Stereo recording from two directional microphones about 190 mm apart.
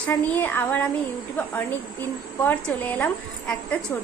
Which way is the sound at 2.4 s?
10° left (ahead or behind).